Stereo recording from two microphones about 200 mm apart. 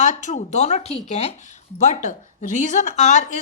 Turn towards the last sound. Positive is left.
turn(degrees=35)  # may be behind; listen again after turning